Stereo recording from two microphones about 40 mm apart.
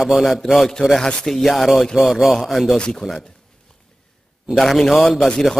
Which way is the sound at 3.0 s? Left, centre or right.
Centre.